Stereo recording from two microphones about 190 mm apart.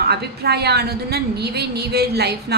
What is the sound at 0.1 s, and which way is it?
A woman's voice, 60° right (ahead or behind).